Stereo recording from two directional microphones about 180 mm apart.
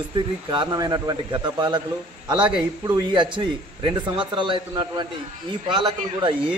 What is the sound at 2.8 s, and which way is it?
A man's voice, 20° right (ahead or behind).